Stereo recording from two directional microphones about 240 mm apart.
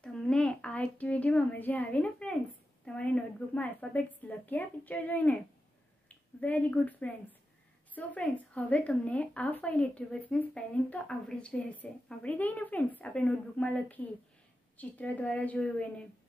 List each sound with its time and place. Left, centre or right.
0.0 s a child's voice: centre